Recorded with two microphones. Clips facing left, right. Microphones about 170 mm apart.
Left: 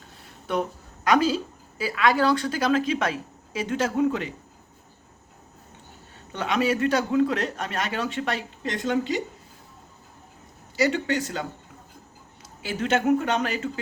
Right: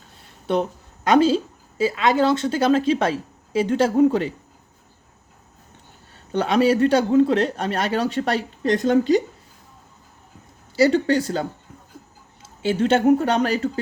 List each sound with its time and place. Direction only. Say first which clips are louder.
0.5 s a woman's voice: right 5 dB; 30° right (ahead or behind)
6.3 s speech: right 6 dB; 35° right (ahead or behind)
10.8 s speech: right 6 dB; 35° right (ahead or behind)